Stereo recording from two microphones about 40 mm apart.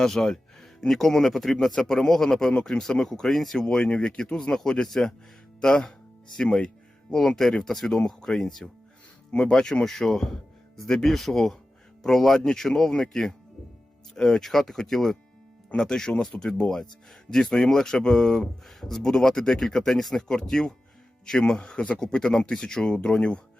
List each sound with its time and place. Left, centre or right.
0.0 s speech: centre
3.1 s speech: centre
3.6 s speech: centre